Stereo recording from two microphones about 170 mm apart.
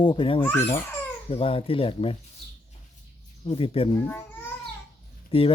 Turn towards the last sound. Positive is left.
turn(degrees=30)  # may be behind; listen again after turning